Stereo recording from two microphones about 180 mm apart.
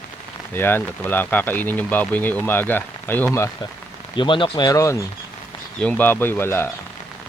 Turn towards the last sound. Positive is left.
turn(degrees=10)  # may be behind; listen again after turning